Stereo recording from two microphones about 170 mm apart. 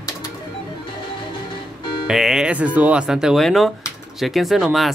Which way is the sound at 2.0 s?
Centre (ahead or behind).